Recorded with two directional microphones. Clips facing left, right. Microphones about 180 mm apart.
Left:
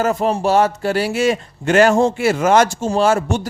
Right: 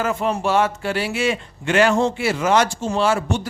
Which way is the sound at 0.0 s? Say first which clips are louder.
Left 4 dB; 40° left (ahead or behind).